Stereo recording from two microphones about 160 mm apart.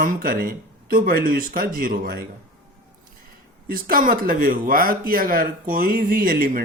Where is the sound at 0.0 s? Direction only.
65° right (ahead or behind).